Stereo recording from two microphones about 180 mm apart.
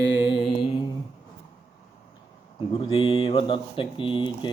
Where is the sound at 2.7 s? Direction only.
30° left (ahead or behind).